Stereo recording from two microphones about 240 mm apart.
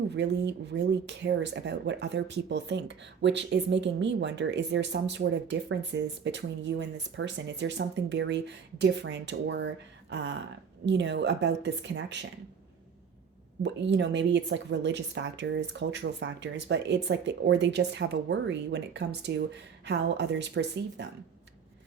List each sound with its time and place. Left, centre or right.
0.1 s speech: right
13.6 s speech: right